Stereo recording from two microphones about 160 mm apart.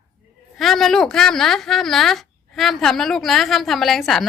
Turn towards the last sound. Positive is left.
turn(degrees=0)  # may be behind; listen again after turning